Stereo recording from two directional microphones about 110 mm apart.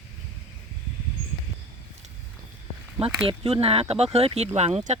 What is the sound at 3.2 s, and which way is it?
Speech, 65° right (ahead or behind).